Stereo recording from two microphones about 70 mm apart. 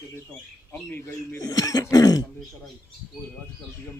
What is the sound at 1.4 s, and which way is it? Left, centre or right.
Cough, left.